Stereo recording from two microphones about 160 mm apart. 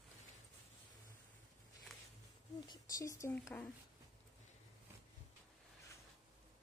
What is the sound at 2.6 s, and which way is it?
Speech, 20° left (ahead or behind).